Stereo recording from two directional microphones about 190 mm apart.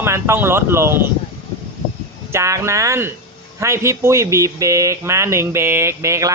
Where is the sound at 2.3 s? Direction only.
15° right (ahead or behind).